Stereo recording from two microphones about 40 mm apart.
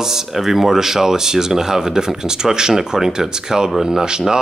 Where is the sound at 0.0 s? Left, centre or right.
Centre.